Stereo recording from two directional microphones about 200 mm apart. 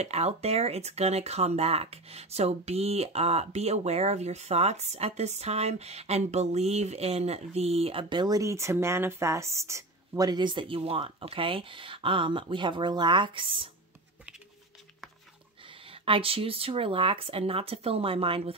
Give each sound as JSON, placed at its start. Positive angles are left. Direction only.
{"t": 0.0, "sound": "speech", "side_deg": -35}
{"t": 15.6, "sound": "speech", "side_deg": -25}